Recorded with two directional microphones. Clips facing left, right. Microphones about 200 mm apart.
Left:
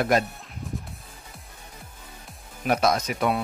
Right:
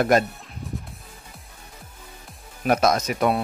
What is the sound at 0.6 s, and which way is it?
Music, centre (ahead or behind).